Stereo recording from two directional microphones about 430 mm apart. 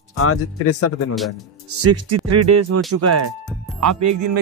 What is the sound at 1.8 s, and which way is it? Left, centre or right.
Speech, right.